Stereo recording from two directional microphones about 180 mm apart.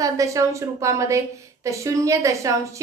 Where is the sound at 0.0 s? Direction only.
15° right (ahead or behind).